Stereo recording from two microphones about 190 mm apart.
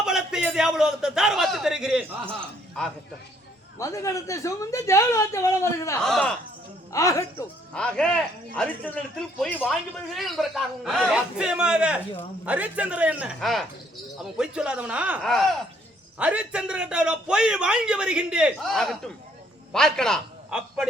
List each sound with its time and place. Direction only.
0.0 s a man's voice: 5° right (ahead or behind)
3.8 s speech: 15° left (ahead or behind)
6.0 s a man's voice: 5° left (ahead or behind)
6.9 s speech: 15° left (ahead or behind)
7.7 s a man's voice: 5° left (ahead or behind)